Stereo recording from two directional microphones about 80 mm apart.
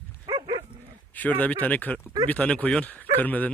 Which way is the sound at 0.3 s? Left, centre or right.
Right.